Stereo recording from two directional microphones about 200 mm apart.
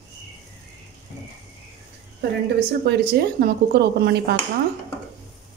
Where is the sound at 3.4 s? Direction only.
50° right (ahead or behind).